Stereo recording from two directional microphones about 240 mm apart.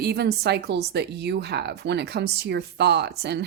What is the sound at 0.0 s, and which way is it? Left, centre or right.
Speech, right.